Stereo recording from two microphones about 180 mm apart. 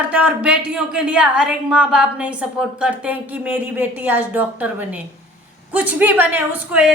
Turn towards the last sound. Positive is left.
turn(degrees=-5)  # may be behind; listen again after turning